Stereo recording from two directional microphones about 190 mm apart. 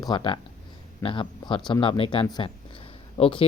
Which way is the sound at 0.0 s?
25° left (ahead or behind).